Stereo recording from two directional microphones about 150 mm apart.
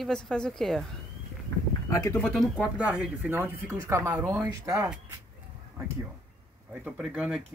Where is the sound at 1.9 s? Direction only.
25° left (ahead or behind).